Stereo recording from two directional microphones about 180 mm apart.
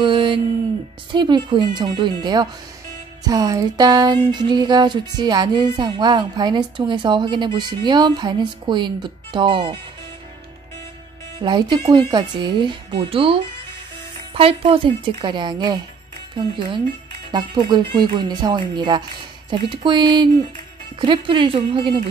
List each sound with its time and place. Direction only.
0.0 s a sound: 25° right (ahead or behind)
1.1 s music: 25° right (ahead or behind)
11.4 s music: 25° right (ahead or behind)